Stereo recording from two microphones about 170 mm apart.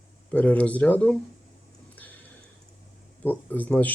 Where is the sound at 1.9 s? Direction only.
10° left (ahead or behind).